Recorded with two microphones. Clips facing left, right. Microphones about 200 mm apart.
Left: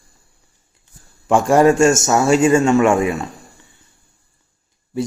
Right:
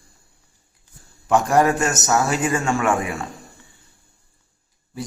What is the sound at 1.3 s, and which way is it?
A man's voice, 25° left (ahead or behind).